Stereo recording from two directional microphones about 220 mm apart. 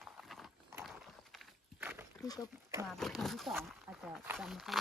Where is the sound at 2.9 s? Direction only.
Centre (ahead or behind).